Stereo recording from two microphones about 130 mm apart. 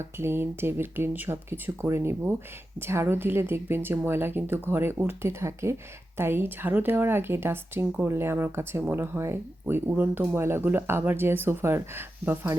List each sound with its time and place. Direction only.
0.0 s speech: 20° right (ahead or behind)